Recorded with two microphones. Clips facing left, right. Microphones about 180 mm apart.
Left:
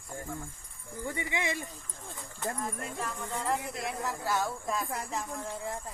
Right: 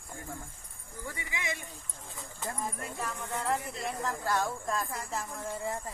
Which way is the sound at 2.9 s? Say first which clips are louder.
Even; centre (ahead or behind).